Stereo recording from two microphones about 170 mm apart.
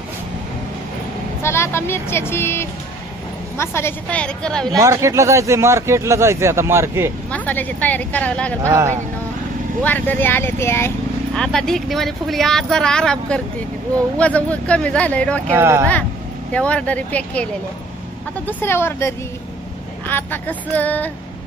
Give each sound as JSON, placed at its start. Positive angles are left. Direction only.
{"t": 1.4, "sound": "speech", "side_deg": 15}
{"t": 4.7, "sound": "speech", "side_deg": -20}
{"t": 7.2, "sound": "speech", "side_deg": 10}
{"t": 8.6, "sound": "speech", "side_deg": -15}
{"t": 9.8, "sound": "speech", "side_deg": 10}
{"t": 11.3, "sound": "speech", "side_deg": 5}
{"t": 15.5, "sound": "speech", "side_deg": -15}
{"t": 16.5, "sound": "speech", "side_deg": 5}
{"t": 18.5, "sound": "speech", "side_deg": 15}